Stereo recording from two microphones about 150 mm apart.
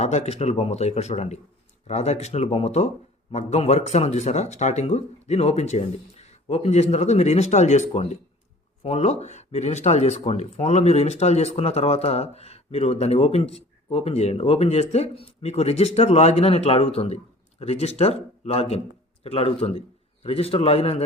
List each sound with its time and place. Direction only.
0.0 s a man's voice: 50° left (ahead or behind)